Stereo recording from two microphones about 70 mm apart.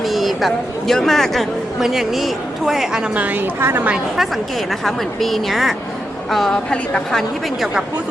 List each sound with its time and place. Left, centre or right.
0.1 s speech: centre
3.2 s a woman's voice: right
4.9 s a woman's voice: centre
7.6 s speech: centre